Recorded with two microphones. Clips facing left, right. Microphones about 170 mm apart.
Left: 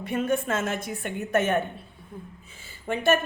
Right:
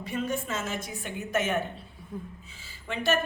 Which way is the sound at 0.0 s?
55° left (ahead or behind).